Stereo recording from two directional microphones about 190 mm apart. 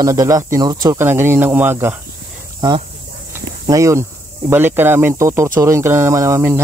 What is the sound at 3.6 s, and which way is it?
Speech, 15° right (ahead or behind).